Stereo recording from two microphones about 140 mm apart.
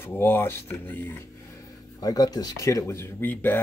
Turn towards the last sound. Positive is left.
turn(degrees=15)  # may be behind; listen again after turning